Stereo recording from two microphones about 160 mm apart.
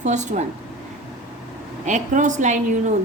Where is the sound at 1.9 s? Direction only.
50° right (ahead or behind).